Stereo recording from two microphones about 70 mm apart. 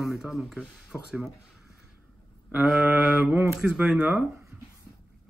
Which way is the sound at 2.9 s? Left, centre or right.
Right.